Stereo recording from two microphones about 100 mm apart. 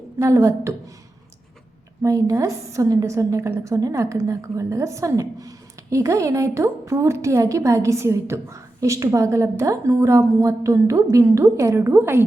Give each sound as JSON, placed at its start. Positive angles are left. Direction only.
{"t": 0.2, "sound": "a woman's voice", "side_deg": -30}
{"t": 2.0, "sound": "a woman's voice", "side_deg": -30}